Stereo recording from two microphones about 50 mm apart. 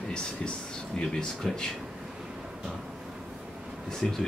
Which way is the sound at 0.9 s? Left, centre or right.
Centre.